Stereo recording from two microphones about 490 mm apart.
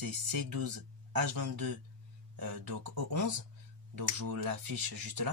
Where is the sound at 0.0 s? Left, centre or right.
Right.